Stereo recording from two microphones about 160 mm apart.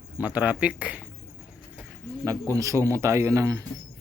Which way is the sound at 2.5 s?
20° right (ahead or behind).